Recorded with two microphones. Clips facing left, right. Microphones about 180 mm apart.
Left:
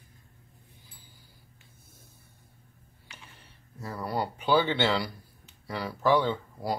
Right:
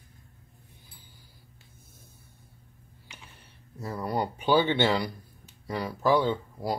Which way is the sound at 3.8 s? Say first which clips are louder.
Right 2 dB; 20° right (ahead or behind).